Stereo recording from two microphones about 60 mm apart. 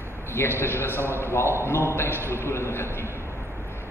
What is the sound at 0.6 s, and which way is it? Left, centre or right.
A man's voice, left.